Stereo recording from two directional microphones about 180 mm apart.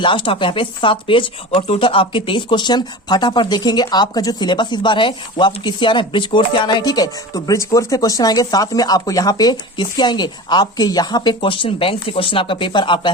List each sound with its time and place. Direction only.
0.0 s speech: 30° left (ahead or behind)